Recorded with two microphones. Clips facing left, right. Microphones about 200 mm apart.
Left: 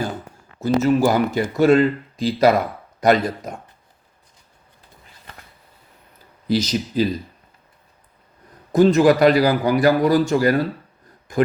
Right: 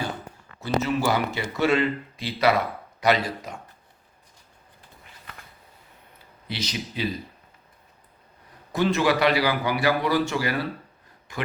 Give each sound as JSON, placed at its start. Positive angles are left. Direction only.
{"t": 0.6, "sound": "speech", "side_deg": 45}
{"t": 6.5, "sound": "speech", "side_deg": 40}
{"t": 8.7, "sound": "speech", "side_deg": 45}